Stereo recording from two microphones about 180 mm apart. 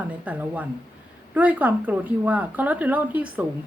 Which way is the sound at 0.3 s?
10° right (ahead or behind).